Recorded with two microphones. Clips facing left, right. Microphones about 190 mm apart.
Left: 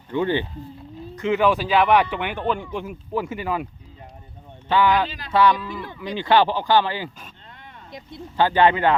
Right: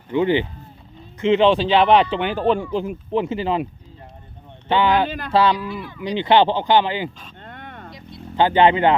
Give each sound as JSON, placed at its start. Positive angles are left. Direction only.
{"t": 0.1, "sound": "speech", "side_deg": -15}
{"t": 4.7, "sound": "speech", "side_deg": -25}
{"t": 5.0, "sound": "speech", "side_deg": -55}
{"t": 5.3, "sound": "speech", "side_deg": -30}
{"t": 7.4, "sound": "a sound", "side_deg": -60}
{"t": 8.4, "sound": "speech", "side_deg": -20}